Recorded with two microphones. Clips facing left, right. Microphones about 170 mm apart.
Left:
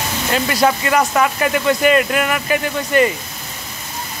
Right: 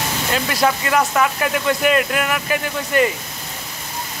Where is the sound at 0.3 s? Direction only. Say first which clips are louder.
Left 3 dB; centre (ahead or behind).